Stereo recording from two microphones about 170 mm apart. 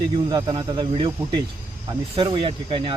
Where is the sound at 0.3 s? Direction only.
25° right (ahead or behind).